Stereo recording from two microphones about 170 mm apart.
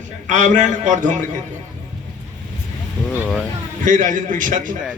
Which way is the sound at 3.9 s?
50° right (ahead or behind).